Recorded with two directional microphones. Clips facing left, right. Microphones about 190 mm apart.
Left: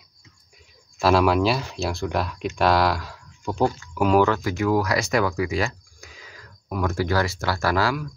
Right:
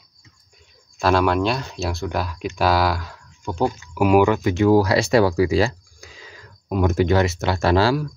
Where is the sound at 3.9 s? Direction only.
10° right (ahead or behind); by 8.1 s 30° right (ahead or behind).